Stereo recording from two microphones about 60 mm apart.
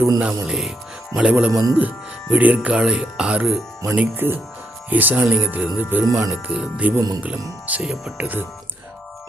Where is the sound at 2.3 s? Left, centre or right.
Right.